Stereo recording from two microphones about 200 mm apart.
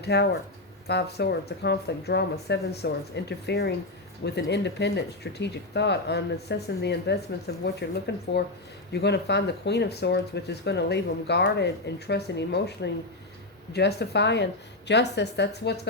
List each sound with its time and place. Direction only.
0.0 s speech: 55° left (ahead or behind)